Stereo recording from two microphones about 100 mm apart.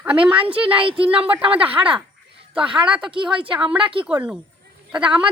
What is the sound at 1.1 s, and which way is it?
A woman's voice, 15° right (ahead or behind).